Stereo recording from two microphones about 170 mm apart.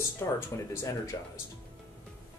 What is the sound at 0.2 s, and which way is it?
Speech, 15° left (ahead or behind).